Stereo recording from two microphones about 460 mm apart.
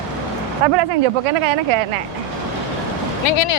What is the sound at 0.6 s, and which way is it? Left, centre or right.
Speech, right.